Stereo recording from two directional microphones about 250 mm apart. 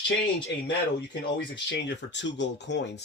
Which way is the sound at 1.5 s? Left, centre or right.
Left.